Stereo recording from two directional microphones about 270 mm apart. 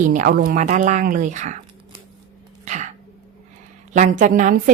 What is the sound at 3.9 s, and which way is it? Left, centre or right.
Speech, right.